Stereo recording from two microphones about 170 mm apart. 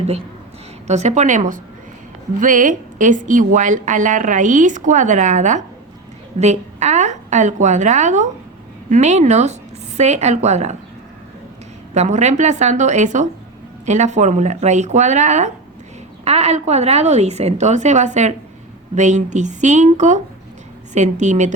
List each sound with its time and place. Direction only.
0.9 s a woman's voice: 40° right (ahead or behind)
11.9 s a woman's voice: 45° right (ahead or behind)